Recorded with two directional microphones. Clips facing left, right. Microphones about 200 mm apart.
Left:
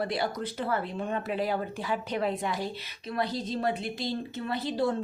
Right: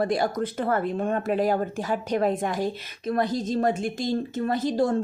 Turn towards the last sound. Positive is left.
turn(degrees=-45)  # may be behind; listen again after turning